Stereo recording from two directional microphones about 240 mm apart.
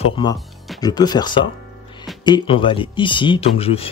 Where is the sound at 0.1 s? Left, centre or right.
Centre.